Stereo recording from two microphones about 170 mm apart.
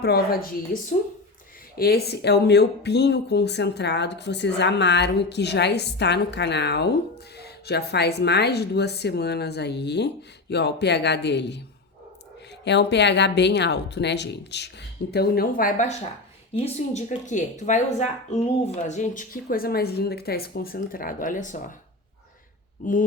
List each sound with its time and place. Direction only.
0.0 s a woman's voice: 70° left (ahead or behind); by 11.6 s 90° left
12.6 s speech: 90° left; by 21.7 s 50° left (ahead or behind)
22.8 s speech: 50° left (ahead or behind)